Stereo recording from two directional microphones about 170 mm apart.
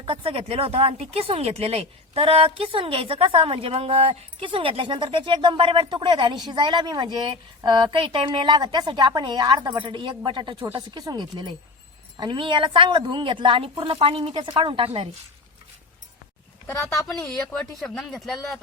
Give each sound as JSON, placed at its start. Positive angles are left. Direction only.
{"t": 0.0, "sound": "a woman's voice", "side_deg": -30}
{"t": 16.6, "sound": "speech", "side_deg": 20}
{"t": 17.2, "sound": "speech", "side_deg": 5}